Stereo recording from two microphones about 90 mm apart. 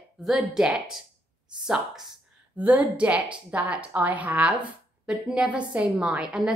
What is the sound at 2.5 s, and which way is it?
A woman's voice, 15° right (ahead or behind).